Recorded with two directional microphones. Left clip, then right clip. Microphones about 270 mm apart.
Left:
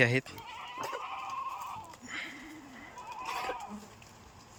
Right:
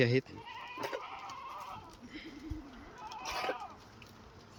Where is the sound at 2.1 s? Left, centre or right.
Centre.